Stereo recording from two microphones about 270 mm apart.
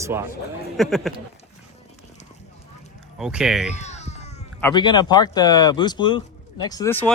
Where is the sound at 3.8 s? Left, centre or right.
Left.